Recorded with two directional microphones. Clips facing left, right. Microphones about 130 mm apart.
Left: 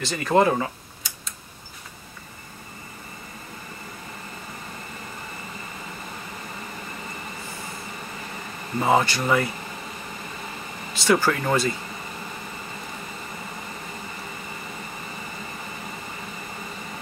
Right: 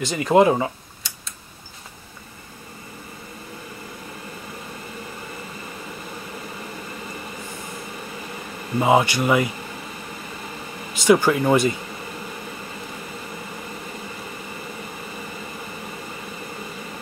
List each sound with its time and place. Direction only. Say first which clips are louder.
0.0 s speech: right 4 dB; 15° right (ahead or behind)
8.7 s speech: right 3 dB; 10° right (ahead or behind)
11.1 s speech: right 5 dB; 15° right (ahead or behind)